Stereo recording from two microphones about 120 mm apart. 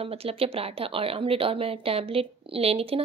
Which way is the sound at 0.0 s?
55° right (ahead or behind).